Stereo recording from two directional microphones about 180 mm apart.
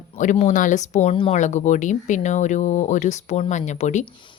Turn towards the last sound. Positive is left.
turn(degrees=40)  # may be behind; listen again after turning